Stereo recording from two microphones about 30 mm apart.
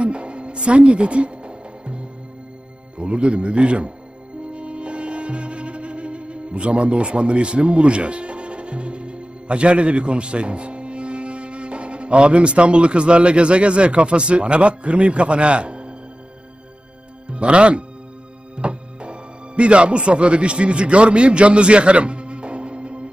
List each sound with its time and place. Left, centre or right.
0.0 s music: right
3.0 s a man's voice: right
4.5 s music: right
17.3 s speech: right
18.6 s music: right